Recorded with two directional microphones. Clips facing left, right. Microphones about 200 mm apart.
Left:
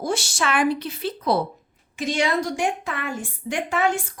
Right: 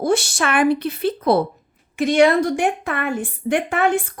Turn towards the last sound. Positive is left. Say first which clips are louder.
# right 5 dB
turn(degrees=-55)  # may be behind; listen again after turning